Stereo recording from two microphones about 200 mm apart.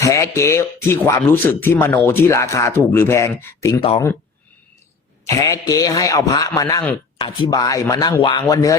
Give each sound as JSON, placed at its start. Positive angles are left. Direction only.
{"t": 0.0, "sound": "speech", "side_deg": 15}
{"t": 3.8, "sound": "speech", "side_deg": 25}
{"t": 5.2, "sound": "speech", "side_deg": 15}